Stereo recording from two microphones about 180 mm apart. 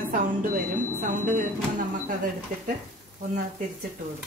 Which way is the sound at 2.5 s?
45° right (ahead or behind).